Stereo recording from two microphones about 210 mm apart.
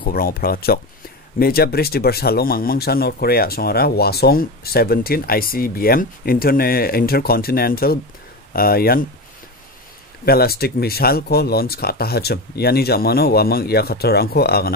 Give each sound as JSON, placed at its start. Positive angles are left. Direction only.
{"t": 0.0, "sound": "speech", "side_deg": 45}
{"t": 10.2, "sound": "speech", "side_deg": 45}